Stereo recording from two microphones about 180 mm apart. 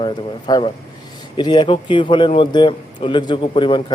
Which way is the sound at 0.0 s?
25° left (ahead or behind).